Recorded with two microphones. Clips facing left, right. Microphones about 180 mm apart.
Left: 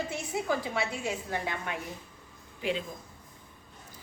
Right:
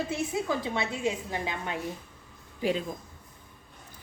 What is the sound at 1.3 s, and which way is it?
Speech, 15° right (ahead or behind).